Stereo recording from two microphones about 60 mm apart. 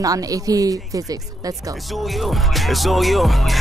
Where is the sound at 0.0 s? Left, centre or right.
Right.